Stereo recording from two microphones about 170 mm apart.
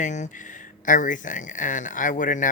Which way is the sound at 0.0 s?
45° left (ahead or behind).